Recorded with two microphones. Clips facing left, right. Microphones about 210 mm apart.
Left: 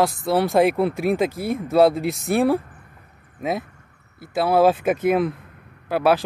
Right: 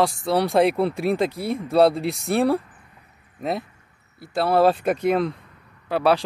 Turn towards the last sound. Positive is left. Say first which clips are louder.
# left 1 dB
turn(degrees=5)  # may be behind; listen again after turning